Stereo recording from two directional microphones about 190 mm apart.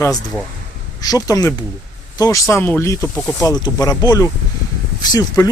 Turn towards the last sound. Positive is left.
turn(degrees=20)  # may be behind; listen again after turning